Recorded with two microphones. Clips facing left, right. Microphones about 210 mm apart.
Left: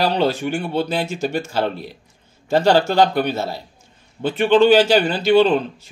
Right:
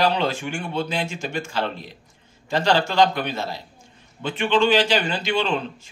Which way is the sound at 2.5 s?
45° left (ahead or behind).